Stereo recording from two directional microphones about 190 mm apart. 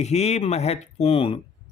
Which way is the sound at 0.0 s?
35° left (ahead or behind).